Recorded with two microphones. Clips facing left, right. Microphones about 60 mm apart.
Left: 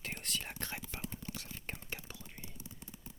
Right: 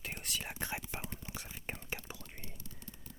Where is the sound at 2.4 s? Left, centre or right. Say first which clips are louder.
Even; centre.